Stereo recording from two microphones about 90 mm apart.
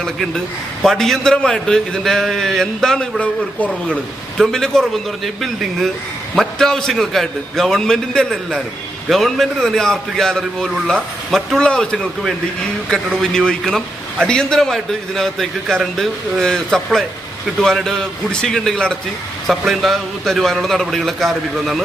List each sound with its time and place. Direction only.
0.0 s a man's voice: 5° left (ahead or behind)